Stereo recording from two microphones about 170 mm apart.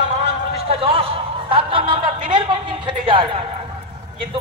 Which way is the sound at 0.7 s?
35° right (ahead or behind).